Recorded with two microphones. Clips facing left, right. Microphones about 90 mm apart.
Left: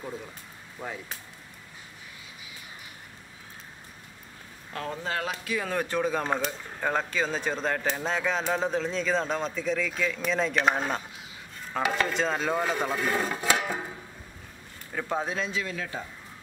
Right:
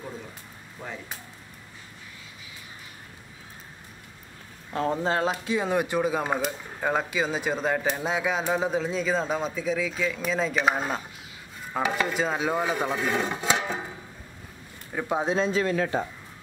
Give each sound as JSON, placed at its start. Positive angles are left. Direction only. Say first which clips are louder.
{"t": 4.7, "sound": "speech", "louder": "right 7 dB", "side_deg": -30}
{"t": 14.9, "sound": "speech", "louder": "right 4 dB", "side_deg": -15}
{"t": 15.3, "sound": "a man's voice", "louder": "right 8 dB", "side_deg": -40}